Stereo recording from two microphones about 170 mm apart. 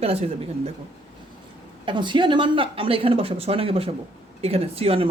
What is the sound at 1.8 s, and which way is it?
Speech, 25° right (ahead or behind).